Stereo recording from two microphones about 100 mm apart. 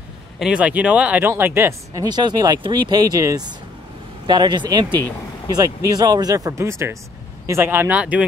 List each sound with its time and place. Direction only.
0.4 s speech: 10° right (ahead or behind)
1.3 s speech: 25° right (ahead or behind)
2.0 s speech: 45° right (ahead or behind)
4.3 s speech: 45° right (ahead or behind); by 8.2 s 15° right (ahead or behind)